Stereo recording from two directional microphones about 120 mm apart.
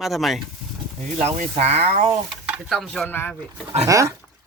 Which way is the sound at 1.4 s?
65° right (ahead or behind).